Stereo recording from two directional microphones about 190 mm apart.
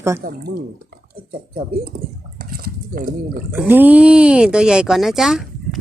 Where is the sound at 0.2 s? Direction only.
50° right (ahead or behind).